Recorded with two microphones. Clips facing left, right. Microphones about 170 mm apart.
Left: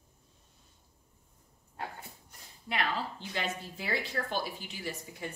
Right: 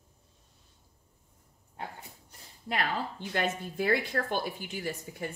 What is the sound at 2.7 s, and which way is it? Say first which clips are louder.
A woman's voice: right 2 dB; 50° right (ahead or behind).